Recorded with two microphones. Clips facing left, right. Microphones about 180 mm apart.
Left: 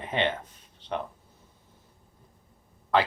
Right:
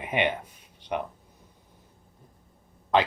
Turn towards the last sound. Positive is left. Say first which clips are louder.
# right 1 dB
turn(degrees=-20)  # may be behind; listen again after turning